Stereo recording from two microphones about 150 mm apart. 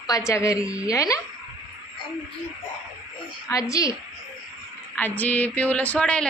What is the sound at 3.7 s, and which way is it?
Speech, 20° left (ahead or behind).